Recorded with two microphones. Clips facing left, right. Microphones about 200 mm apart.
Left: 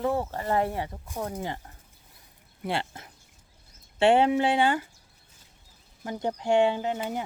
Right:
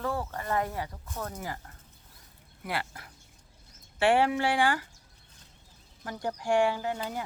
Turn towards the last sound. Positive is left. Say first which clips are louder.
# left 3 dB
turn(degrees=20)  # may be behind; listen again after turning